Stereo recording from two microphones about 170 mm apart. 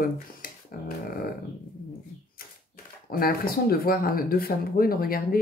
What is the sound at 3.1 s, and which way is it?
Speech, 60° left (ahead or behind).